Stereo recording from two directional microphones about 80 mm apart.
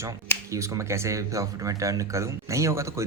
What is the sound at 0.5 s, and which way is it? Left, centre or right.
Speech, right.